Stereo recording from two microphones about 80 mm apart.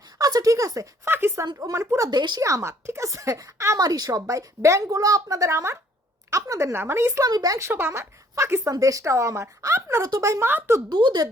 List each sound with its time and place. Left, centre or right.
0.2 s speech: right
1.1 s speech: right
2.0 s speech: right
2.4 s speech: right
3.8 s a woman's voice: right
7.3 s a woman's voice: right
7.6 s a woman's voice: right
10.4 s speech: right
10.8 s speech: right